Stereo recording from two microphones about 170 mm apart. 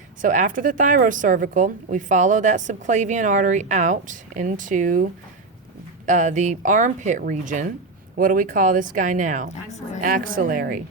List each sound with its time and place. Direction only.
0.2 s a woman's voice: 50° right (ahead or behind)
6.1 s a woman's voice: 45° right (ahead or behind)